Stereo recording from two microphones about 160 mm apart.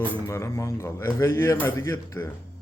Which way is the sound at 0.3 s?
20° left (ahead or behind).